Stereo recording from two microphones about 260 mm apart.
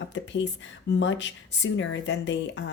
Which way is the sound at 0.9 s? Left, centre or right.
Left.